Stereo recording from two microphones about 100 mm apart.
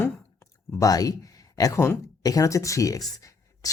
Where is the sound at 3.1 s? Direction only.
35° left (ahead or behind).